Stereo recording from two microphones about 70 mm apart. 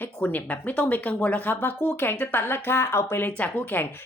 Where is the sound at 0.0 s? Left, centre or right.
Left.